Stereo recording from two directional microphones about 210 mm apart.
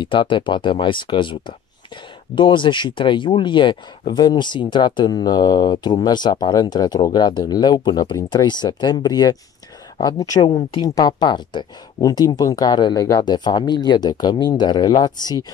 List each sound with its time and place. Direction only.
0.0 s speech: 20° left (ahead or behind)